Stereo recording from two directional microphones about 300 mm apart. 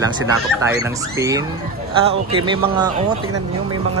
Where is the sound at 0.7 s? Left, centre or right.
Centre.